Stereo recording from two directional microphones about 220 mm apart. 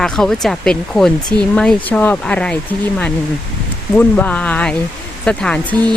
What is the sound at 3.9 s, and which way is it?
Speech, 5° left (ahead or behind).